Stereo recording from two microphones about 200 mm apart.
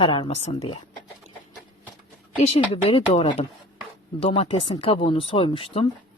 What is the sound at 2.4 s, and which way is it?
Speech, 30° left (ahead or behind).